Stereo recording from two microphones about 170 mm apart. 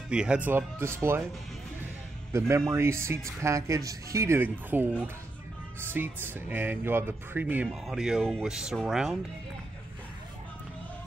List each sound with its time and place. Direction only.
0.1 s speech: 5° right (ahead or behind)
2.3 s speech: 15° right (ahead or behind)
5.9 s speech: 10° right (ahead or behind)